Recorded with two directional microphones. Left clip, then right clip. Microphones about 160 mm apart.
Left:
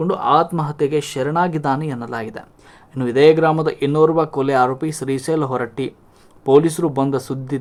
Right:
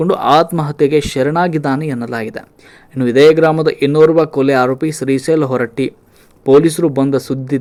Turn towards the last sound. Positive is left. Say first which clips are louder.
# right 6 dB
turn(degrees=-10)  # may be behind; listen again after turning